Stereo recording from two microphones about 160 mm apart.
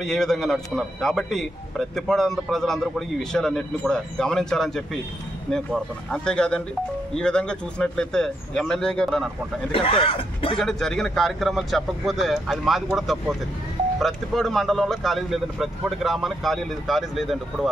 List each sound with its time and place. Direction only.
0.0 s a man's voice: centre (ahead or behind)
6.0 s a man's voice: 5° left (ahead or behind)
9.7 s speech: 35° left (ahead or behind)
10.6 s a man's voice: 5° left (ahead or behind)